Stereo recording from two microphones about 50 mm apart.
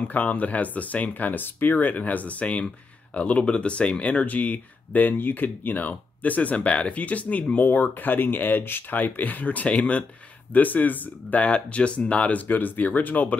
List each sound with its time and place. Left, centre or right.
0.1 s speech: left